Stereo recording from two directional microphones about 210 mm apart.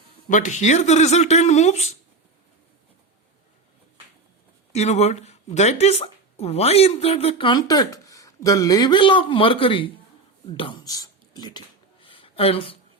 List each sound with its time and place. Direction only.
0.3 s speech: 35° left (ahead or behind)
4.7 s speech: 30° left (ahead or behind)
10.5 s a sound: 25° left (ahead or behind)